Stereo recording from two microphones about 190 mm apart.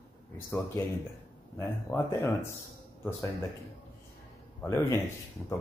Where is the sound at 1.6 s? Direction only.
15° left (ahead or behind).